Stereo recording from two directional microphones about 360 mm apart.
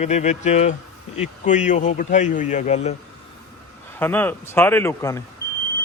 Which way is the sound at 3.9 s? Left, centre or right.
Centre.